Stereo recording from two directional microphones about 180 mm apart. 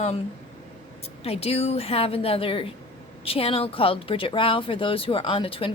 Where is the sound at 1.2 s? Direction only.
35° left (ahead or behind).